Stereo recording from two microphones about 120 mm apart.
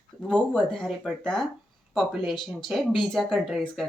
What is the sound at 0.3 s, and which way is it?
Speech, 5° left (ahead or behind).